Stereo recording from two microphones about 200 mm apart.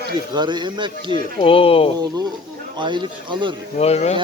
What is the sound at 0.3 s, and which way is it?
Speech, 20° right (ahead or behind).